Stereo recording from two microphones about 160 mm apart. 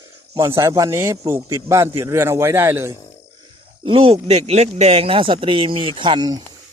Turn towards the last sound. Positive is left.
turn(degrees=-25)  # may be behind; listen again after turning